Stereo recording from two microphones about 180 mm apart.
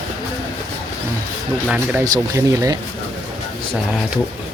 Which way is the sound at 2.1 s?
20° right (ahead or behind).